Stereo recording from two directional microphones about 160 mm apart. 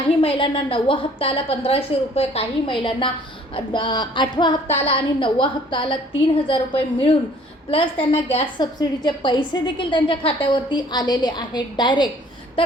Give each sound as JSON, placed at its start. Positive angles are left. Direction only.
{"t": 0.2, "sound": "a woman's voice", "side_deg": 35}